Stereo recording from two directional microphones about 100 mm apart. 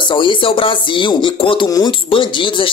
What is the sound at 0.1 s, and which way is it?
Speech, 55° left (ahead or behind).